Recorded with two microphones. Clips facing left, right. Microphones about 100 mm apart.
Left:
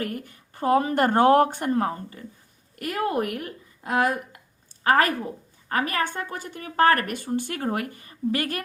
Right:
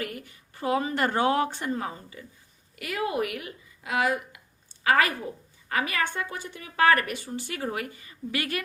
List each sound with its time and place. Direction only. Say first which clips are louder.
0.0 s a woman's voice: left 4 dB; 45° left (ahead or behind)